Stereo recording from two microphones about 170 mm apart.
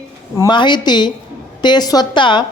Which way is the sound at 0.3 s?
25° left (ahead or behind).